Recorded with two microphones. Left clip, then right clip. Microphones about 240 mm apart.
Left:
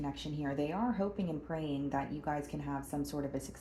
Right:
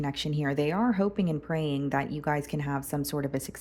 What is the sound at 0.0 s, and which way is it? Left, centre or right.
Speech, right.